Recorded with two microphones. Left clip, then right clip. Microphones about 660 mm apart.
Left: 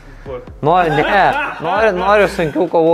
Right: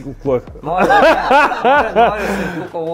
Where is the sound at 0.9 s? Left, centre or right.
Right.